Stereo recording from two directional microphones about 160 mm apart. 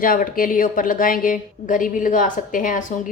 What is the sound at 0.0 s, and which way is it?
Speech, 60° left (ahead or behind).